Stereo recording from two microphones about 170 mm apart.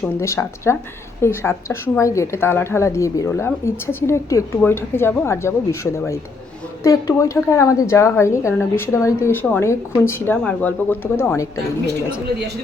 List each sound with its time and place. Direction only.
0.2 s speech: 15° left (ahead or behind)